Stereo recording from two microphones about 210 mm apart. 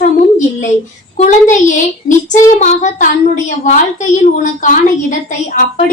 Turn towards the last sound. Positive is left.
turn(degrees=35)  # may be behind; listen again after turning